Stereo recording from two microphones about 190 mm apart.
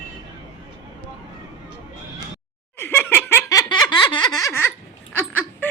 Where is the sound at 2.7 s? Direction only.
10° left (ahead or behind).